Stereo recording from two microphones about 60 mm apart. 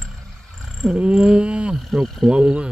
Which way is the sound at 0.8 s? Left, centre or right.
Centre.